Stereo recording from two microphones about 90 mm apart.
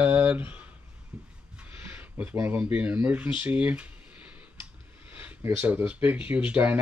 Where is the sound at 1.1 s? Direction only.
10° right (ahead or behind).